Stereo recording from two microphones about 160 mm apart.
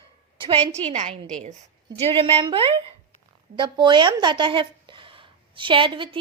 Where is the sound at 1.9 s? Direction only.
35° right (ahead or behind).